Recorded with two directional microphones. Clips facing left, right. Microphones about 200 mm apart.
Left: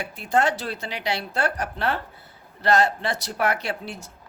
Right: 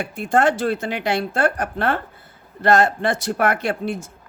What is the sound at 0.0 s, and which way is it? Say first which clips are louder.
Speech: right 4 dB; 50° right (ahead or behind).